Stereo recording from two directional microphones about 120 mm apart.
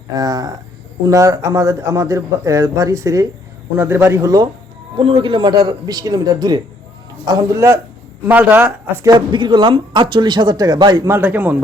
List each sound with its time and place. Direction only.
0.1 s a man's voice: 35° right (ahead or behind)
4.9 s a man's voice: 45° right (ahead or behind); by 9.1 s 20° right (ahead or behind)
9.1 s speech: 40° right (ahead or behind)
11.2 s speech: 15° right (ahead or behind)